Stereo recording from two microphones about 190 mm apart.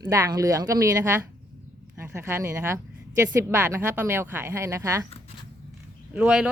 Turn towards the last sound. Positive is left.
turn(degrees=-5)  # may be behind; listen again after turning